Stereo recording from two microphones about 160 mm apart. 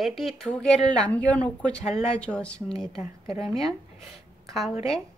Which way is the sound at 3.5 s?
5° left (ahead or behind).